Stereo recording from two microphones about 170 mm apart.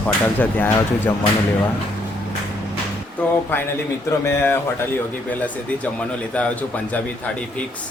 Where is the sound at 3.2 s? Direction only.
10° left (ahead or behind).